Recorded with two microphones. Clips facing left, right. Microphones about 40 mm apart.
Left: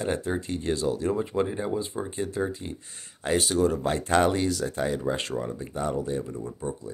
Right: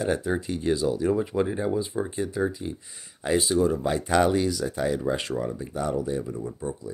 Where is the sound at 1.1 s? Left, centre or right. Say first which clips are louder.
Right 2 dB; centre.